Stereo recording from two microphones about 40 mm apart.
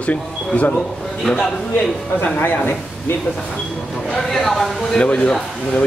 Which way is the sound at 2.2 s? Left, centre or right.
Left.